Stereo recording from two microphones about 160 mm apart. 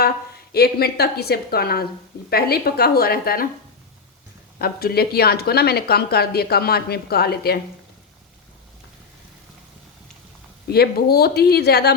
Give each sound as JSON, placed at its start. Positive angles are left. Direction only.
{"t": 0.5, "sound": "a woman's voice", "side_deg": 80}
{"t": 4.6, "sound": "speech", "side_deg": 75}
{"t": 10.7, "sound": "speech", "side_deg": 80}